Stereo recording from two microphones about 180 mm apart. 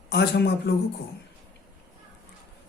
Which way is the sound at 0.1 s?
65° left (ahead or behind).